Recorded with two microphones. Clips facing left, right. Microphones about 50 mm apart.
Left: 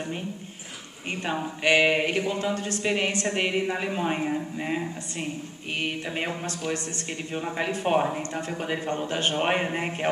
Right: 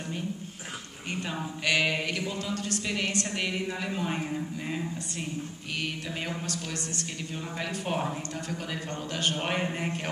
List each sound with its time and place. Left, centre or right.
1.1 s speech: left